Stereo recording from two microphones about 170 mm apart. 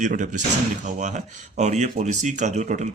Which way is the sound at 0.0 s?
45° right (ahead or behind).